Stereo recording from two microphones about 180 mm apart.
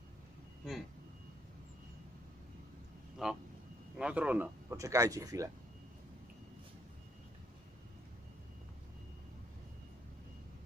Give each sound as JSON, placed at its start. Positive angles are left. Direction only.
{"t": 0.6, "sound": "speech", "side_deg": 0}
{"t": 3.2, "sound": "speech", "side_deg": 0}